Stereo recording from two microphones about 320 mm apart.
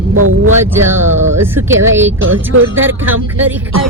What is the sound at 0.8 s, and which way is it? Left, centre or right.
Speech, centre.